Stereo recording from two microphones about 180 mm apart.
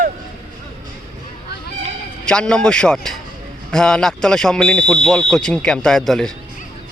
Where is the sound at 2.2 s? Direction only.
5° left (ahead or behind).